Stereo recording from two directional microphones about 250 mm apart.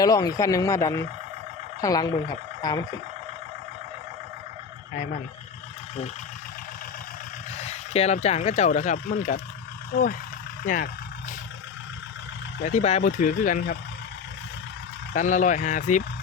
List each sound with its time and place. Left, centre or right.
0.0 s speech: centre
7.5 s speech: left
12.6 s speech: left
15.1 s speech: left